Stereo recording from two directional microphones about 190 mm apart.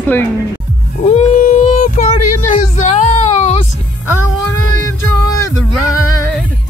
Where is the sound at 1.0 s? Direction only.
35° left (ahead or behind).